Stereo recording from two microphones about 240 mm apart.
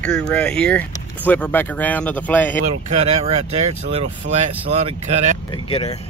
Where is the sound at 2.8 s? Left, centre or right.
Right.